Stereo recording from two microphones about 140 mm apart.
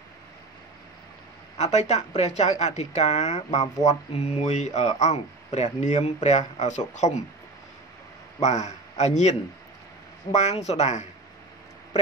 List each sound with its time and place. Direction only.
1.6 s speech: 55° left (ahead or behind)
8.4 s a man's voice: 55° left (ahead or behind)